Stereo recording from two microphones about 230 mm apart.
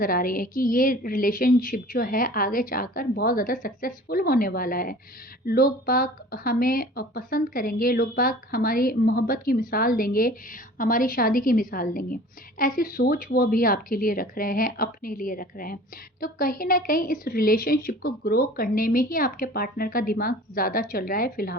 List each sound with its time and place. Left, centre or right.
0.0 s a woman's voice: left